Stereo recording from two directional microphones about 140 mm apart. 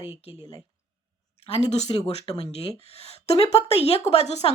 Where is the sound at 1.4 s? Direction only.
50° left (ahead or behind).